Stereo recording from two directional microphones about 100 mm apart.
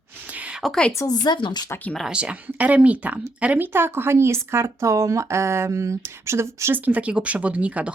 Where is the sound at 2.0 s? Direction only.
10° right (ahead or behind).